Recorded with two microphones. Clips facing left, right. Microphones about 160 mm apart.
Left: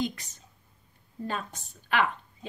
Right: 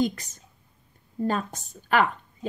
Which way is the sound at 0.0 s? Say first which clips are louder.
Right 6 dB; 45° right (ahead or behind).